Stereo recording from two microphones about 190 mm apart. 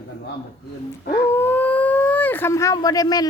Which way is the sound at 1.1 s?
10° left (ahead or behind).